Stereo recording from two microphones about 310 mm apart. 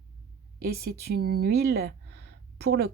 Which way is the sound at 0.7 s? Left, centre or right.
Right.